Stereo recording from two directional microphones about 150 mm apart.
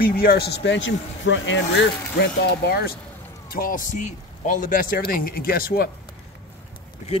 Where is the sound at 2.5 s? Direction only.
90° left.